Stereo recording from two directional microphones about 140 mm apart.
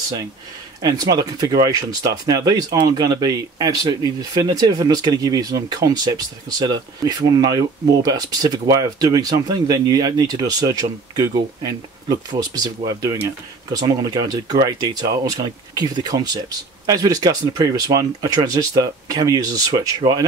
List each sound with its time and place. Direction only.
0.8 s speech: 25° right (ahead or behind)